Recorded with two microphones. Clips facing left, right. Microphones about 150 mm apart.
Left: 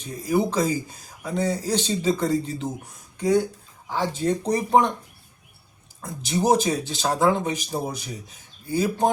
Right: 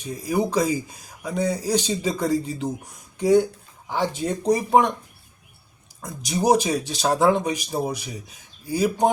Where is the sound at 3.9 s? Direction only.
15° right (ahead or behind).